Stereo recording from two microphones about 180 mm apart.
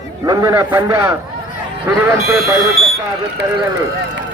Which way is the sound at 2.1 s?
15° right (ahead or behind).